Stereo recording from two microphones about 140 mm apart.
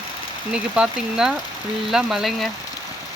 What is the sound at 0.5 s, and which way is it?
Speech, 5° right (ahead or behind).